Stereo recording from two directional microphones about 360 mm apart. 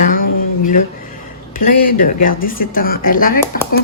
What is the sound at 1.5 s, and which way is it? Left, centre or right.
Speech, left.